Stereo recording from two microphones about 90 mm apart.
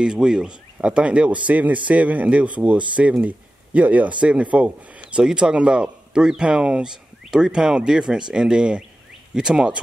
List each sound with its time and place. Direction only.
0.0 s speech: 10° right (ahead or behind)